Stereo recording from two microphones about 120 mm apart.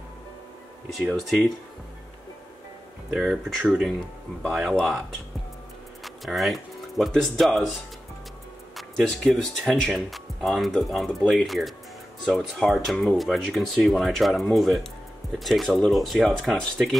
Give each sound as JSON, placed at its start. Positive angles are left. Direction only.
{"t": 3.1, "sound": "speech", "side_deg": 0}
{"t": 6.0, "sound": "speech", "side_deg": 0}
{"t": 8.7, "sound": "speech", "side_deg": 0}